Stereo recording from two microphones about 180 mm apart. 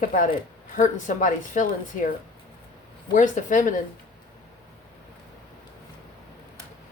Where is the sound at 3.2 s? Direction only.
45° left (ahead or behind).